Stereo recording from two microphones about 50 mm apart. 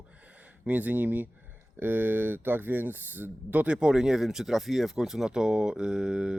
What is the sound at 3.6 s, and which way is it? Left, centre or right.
Speech, centre.